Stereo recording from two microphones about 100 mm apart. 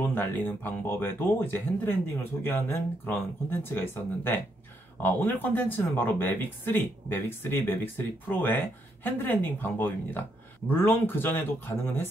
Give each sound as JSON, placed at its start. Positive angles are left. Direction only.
{"t": 0.0, "sound": "speech", "side_deg": 20}